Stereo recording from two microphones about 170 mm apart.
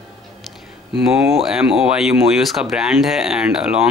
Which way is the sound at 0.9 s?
5° right (ahead or behind).